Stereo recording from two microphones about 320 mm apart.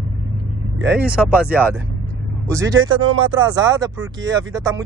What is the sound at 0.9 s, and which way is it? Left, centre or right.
Speech, centre.